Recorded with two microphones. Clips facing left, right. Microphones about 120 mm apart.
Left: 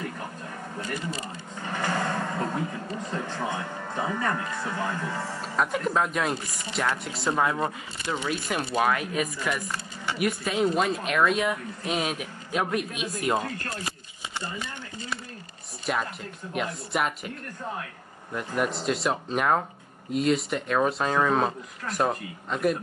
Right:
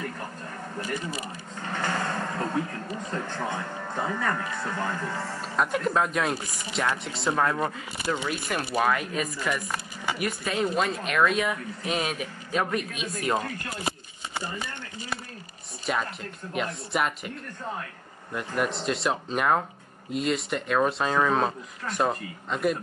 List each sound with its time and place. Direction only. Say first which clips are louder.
0.7 s speech: right 1 dB; 10° right (ahead or behind)
1.7 s a sound: left 1 dB; 5° left (ahead or behind)
3.1 s speech: even; 5° left (ahead or behind)
15.8 s speech: even; centre (ahead or behind)
18.3 s speech: even; centre (ahead or behind)